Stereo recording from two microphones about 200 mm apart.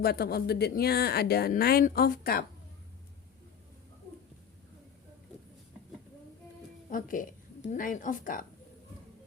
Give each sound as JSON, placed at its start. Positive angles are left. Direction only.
{"t": 0.0, "sound": "speech", "side_deg": 50}
{"t": 6.9, "sound": "a woman's voice", "side_deg": 40}